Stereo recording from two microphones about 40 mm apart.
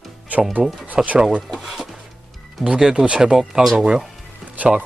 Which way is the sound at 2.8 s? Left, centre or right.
Centre.